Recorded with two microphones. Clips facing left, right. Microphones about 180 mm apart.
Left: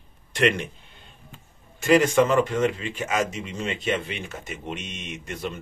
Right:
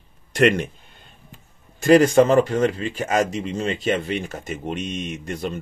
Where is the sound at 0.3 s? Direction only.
40° right (ahead or behind).